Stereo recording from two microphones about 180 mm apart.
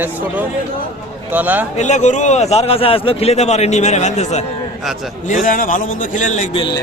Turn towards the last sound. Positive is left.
turn(degrees=25)  # may be behind; listen again after turning